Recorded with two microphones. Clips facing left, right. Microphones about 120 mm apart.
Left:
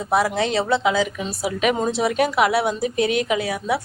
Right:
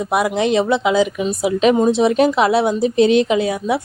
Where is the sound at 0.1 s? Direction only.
20° right (ahead or behind).